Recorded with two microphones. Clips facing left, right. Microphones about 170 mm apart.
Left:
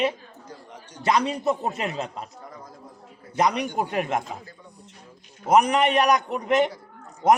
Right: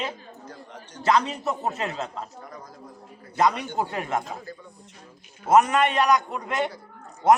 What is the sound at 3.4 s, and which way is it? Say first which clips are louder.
Speech: even; 15° left (ahead or behind).